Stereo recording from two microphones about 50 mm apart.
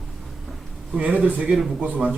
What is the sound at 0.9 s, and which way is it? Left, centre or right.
A man's voice, right.